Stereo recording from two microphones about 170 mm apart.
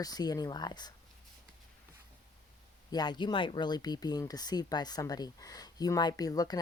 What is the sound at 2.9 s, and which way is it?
Speech, 25° left (ahead or behind).